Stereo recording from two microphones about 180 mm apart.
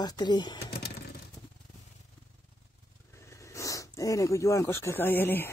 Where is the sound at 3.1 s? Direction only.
15° left (ahead or behind).